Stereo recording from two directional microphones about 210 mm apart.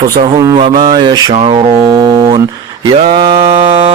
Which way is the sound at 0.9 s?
20° right (ahead or behind).